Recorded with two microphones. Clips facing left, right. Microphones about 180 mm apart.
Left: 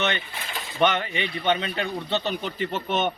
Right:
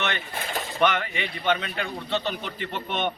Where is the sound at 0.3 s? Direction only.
45° right (ahead or behind).